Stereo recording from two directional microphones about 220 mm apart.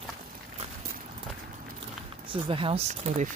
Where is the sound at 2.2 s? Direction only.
25° right (ahead or behind).